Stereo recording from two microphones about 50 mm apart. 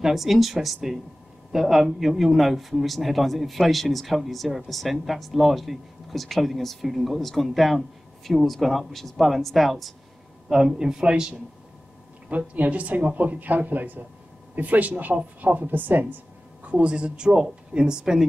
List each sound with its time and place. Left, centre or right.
0.0 s speech: centre
10.5 s speech: centre
12.3 s speech: right
16.6 s speech: right